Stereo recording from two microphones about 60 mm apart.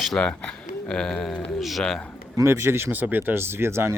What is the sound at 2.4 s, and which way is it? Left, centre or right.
Speech, right.